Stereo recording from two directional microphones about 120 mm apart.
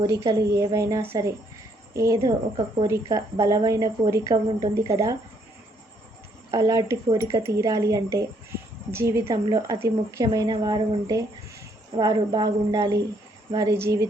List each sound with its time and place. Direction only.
0.0 s speech: 30° right (ahead or behind)
6.5 s speech: 25° right (ahead or behind)